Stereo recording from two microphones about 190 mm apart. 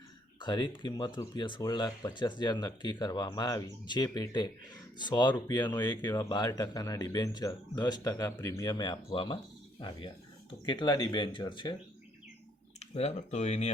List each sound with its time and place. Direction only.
0.3 s speech: 25° left (ahead or behind)
10.7 s speech: 25° left (ahead or behind)
12.8 s speech: 35° left (ahead or behind)